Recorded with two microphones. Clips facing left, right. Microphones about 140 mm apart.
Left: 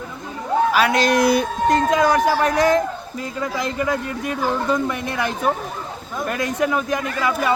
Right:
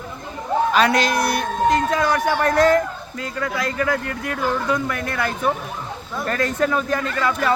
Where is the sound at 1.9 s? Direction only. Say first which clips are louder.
Left 3 dB; 15° left (ahead or behind).